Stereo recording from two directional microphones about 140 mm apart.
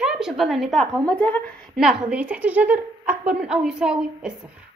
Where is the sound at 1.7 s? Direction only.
Centre (ahead or behind).